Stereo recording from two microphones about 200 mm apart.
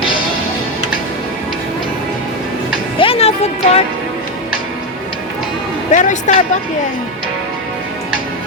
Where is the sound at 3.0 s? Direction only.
30° left (ahead or behind).